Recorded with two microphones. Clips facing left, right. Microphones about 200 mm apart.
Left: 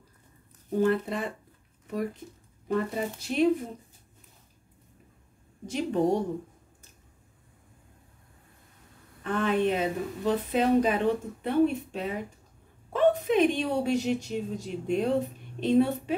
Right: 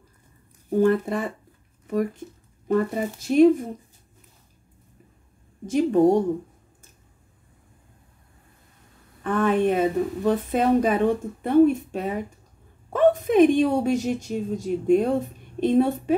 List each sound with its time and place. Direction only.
0.7 s a woman's voice: 45° right (ahead or behind)
2.7 s a woman's voice: 45° right (ahead or behind)
5.7 s a woman's voice: 50° right (ahead or behind)
9.2 s a woman's voice: 50° right (ahead or behind)